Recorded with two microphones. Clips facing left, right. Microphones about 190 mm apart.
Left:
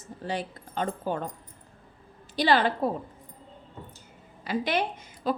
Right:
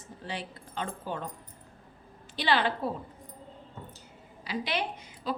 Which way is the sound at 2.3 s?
40° left (ahead or behind).